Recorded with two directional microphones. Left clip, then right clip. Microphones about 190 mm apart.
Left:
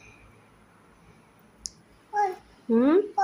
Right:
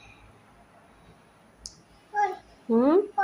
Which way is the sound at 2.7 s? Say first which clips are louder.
Even; 10° left (ahead or behind).